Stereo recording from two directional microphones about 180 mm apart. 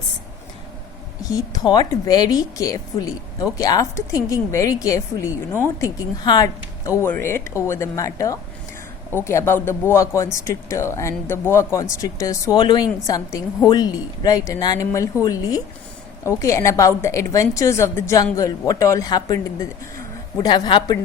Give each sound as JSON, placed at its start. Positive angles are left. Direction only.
{"t": 1.2, "sound": "speech", "side_deg": 20}